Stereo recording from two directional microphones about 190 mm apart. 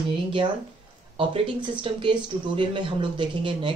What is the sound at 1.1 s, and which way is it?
Speech, 30° right (ahead or behind).